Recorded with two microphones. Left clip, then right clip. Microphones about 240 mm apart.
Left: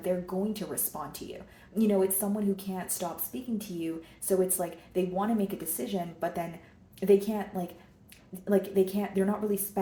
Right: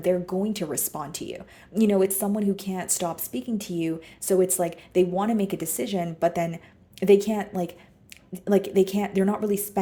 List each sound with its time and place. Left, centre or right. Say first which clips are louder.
0.0 s speech: right 6 dB; right